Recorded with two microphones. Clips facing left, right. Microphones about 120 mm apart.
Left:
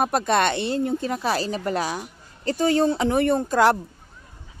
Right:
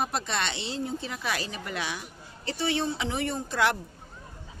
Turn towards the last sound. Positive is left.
turn(degrees=45)  # may be behind; listen again after turning